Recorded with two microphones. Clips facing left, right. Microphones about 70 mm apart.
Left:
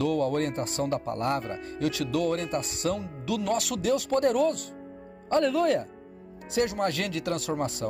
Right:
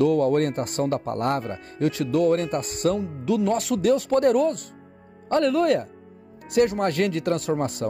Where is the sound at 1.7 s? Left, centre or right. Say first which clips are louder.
Right 6 dB; right.